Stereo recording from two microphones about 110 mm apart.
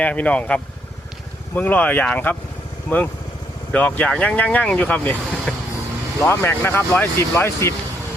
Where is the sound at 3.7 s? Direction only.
10° left (ahead or behind).